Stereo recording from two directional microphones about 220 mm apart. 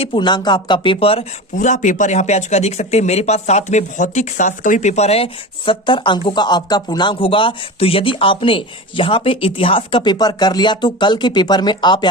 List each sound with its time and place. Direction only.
0.0 s speech: 20° left (ahead or behind)